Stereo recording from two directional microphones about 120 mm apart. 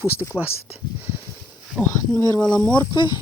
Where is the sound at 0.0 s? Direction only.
20° left (ahead or behind).